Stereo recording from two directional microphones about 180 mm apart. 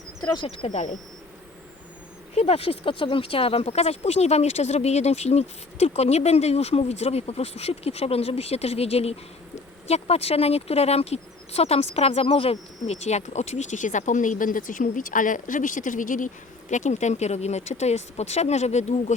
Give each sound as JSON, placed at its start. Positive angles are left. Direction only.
{"t": 0.3, "sound": "speech", "side_deg": 35}
{"t": 2.3, "sound": "speech", "side_deg": 35}